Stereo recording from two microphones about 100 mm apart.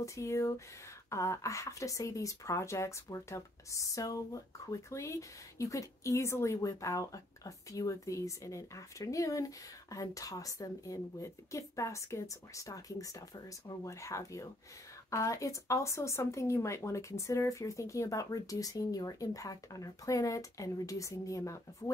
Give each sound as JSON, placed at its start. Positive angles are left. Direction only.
{"t": 0.0, "sound": "speech", "side_deg": 30}